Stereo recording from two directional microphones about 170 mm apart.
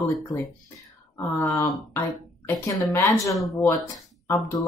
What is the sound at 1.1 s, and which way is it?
Speech, 15° left (ahead or behind).